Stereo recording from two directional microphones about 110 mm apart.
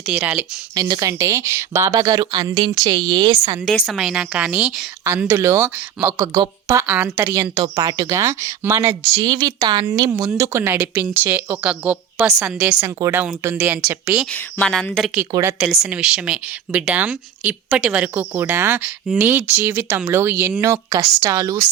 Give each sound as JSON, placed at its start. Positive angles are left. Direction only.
{"t": 0.1, "sound": "speech", "side_deg": -15}
{"t": 0.8, "sound": "speech", "side_deg": -35}
{"t": 2.0, "sound": "speech", "side_deg": -40}
{"t": 3.8, "sound": "speech", "side_deg": -5}
{"t": 5.3, "sound": "speech", "side_deg": -25}
{"t": 6.1, "sound": "speech", "side_deg": -40}
{"t": 6.8, "sound": "speech", "side_deg": -15}
{"t": 7.5, "sound": "speech", "side_deg": -40}
{"t": 9.2, "sound": "speech", "side_deg": -40}
{"t": 10.1, "sound": "a woman's voice", "side_deg": -30}
{"t": 12.8, "sound": "speech", "side_deg": -30}
{"t": 13.1, "sound": "speech", "side_deg": -20}
{"t": 13.8, "sound": "speech", "side_deg": -10}
{"t": 14.6, "sound": "a woman's voice", "side_deg": 5}